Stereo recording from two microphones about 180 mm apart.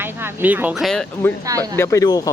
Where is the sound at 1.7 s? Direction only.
15° left (ahead or behind).